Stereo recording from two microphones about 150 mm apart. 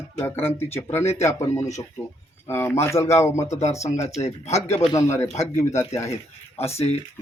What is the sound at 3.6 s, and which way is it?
Speech, 50° left (ahead or behind).